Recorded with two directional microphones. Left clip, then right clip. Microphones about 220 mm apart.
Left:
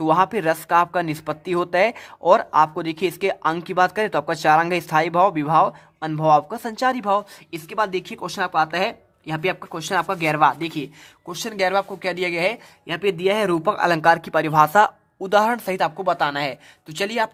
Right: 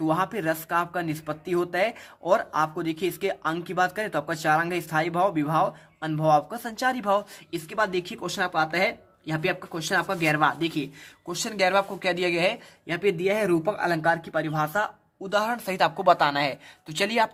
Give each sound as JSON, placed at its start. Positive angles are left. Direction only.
{"t": 0.0, "sound": "speech", "side_deg": 35}
{"t": 13.0, "sound": "speech", "side_deg": 35}
{"t": 16.0, "sound": "speech", "side_deg": 5}